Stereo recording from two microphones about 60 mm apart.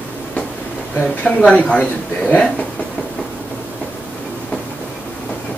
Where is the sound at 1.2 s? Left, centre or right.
Left.